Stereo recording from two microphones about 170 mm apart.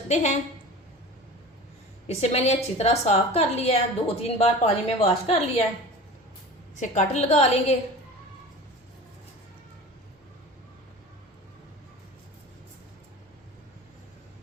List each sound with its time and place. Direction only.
0.1 s a woman's voice: 40° left (ahead or behind)
2.0 s a woman's voice: 40° left (ahead or behind)
6.7 s a woman's voice: 45° left (ahead or behind)